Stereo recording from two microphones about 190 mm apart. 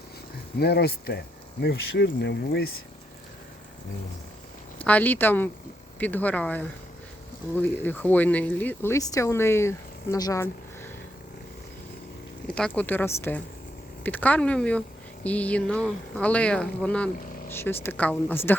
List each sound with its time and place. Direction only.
0.6 s speech: 60° left (ahead or behind)
4.8 s speech: 10° left (ahead or behind)
12.5 s speech: 5° left (ahead or behind)